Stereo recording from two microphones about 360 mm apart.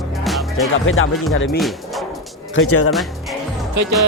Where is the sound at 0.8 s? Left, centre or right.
Left.